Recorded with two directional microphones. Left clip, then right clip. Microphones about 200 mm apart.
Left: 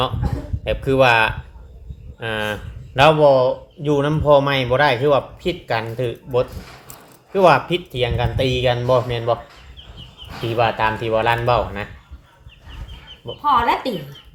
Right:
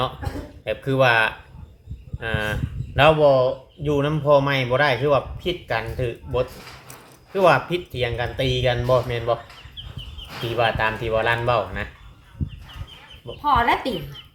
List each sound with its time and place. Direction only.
0.6 s speech: 30° left (ahead or behind)
10.6 s speech: 30° left (ahead or behind)
13.4 s a woman's voice: centre (ahead or behind)